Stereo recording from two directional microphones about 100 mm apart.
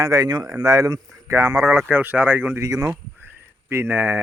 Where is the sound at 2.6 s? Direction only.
30° right (ahead or behind).